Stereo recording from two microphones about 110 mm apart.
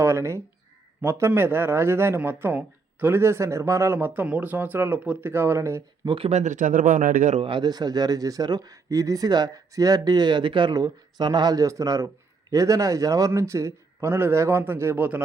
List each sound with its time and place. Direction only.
0.0 s speech: 25° right (ahead or behind)
6.1 s speech: 60° right (ahead or behind); by 6.5 s 75° right (ahead or behind)
7.4 s speech: 45° right (ahead or behind); by 15.2 s 15° right (ahead or behind)